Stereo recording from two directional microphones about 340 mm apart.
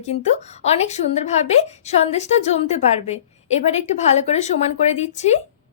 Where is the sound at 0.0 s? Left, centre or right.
Centre.